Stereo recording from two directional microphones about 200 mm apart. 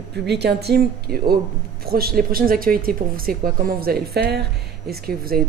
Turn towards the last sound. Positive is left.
turn(degrees=-50)  # may be behind; listen again after turning